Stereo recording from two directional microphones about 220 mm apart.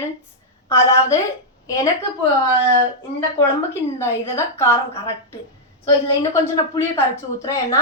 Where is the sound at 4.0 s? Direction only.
10° left (ahead or behind).